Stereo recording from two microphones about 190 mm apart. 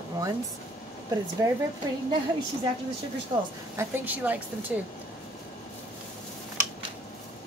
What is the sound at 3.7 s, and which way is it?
Speech, 10° right (ahead or behind).